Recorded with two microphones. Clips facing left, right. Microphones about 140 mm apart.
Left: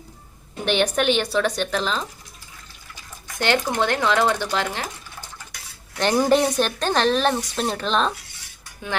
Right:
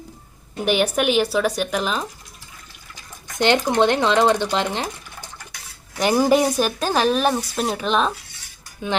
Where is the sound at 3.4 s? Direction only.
20° right (ahead or behind).